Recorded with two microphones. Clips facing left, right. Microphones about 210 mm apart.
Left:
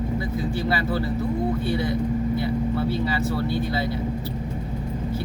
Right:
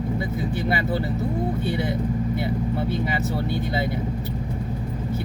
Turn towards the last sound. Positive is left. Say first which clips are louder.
# left 1 dB
turn(degrees=-20)  # may be behind; listen again after turning